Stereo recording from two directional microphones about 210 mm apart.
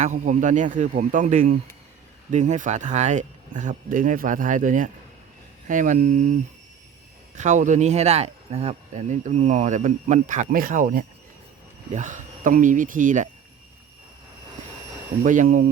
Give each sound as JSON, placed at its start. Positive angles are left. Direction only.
{"t": 0.0, "sound": "speech", "side_deg": -35}
{"t": 7.3, "sound": "speech", "side_deg": -35}
{"t": 15.2, "sound": "speech", "side_deg": -40}